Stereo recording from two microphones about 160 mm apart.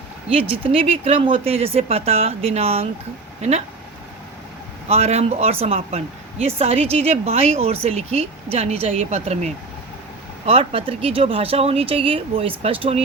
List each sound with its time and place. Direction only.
0.3 s speech: 35° right (ahead or behind)
4.9 s speech: 40° right (ahead or behind)